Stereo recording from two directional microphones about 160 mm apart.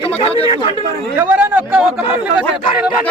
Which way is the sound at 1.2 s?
10° right (ahead or behind).